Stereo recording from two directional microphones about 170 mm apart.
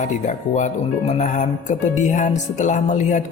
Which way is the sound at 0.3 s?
45° left (ahead or behind).